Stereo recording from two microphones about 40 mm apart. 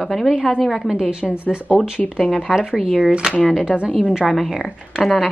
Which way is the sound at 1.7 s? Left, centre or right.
Centre.